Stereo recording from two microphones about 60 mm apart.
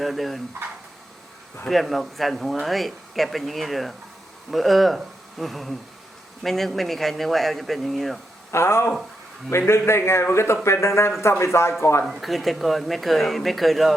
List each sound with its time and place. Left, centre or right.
0.0 s speech: centre
1.6 s speech: centre
8.5 s a man's voice: left
12.2 s speech: centre